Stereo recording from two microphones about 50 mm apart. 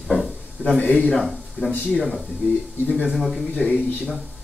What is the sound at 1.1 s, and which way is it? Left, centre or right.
Speech, centre.